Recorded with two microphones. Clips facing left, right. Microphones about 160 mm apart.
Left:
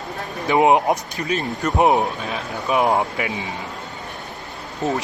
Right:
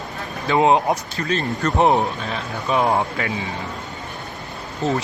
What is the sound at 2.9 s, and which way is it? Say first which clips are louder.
Speech: even; 20° left (ahead or behind).